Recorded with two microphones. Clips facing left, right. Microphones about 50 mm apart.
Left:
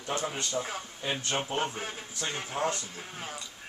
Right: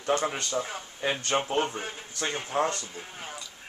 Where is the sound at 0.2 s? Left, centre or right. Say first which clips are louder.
Right 4 dB; right.